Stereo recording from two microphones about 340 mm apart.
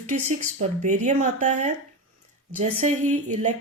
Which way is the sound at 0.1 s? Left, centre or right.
Right.